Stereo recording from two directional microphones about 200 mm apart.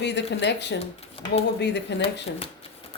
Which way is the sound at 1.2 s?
25° left (ahead or behind).